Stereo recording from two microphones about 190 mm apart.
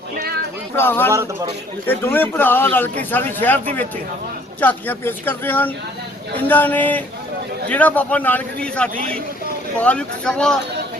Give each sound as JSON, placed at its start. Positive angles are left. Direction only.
{"t": 0.8, "sound": "a man's voice", "side_deg": 10}
{"t": 1.1, "sound": "speech", "side_deg": -15}
{"t": 1.9, "sound": "a man's voice", "side_deg": 10}